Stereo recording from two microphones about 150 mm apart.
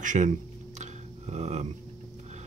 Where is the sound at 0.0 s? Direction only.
60° right (ahead or behind).